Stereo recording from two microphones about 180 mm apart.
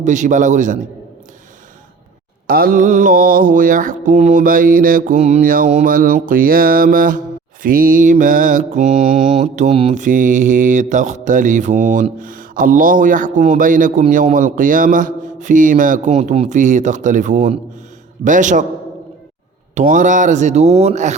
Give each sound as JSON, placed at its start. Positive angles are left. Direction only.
{"t": 0.0, "sound": "mantra", "side_deg": -45}
{"t": 2.5, "sound": "mantra", "side_deg": -55}
{"t": 19.7, "sound": "speech", "side_deg": -45}